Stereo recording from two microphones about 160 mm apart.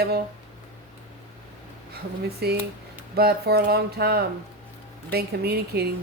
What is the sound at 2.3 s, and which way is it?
Speech, 90° right.